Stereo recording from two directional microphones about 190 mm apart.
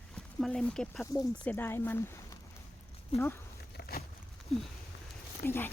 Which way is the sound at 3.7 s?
55° left (ahead or behind).